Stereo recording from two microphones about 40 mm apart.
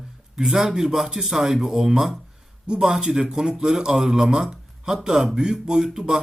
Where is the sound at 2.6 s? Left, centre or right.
Centre.